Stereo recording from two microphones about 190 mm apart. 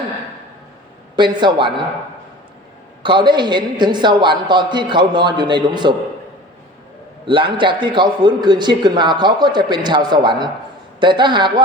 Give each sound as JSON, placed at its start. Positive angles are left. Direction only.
{"t": 1.1, "sound": "a man's voice", "side_deg": -25}
{"t": 3.0, "sound": "a man's voice", "side_deg": -25}
{"t": 7.3, "sound": "a man's voice", "side_deg": -25}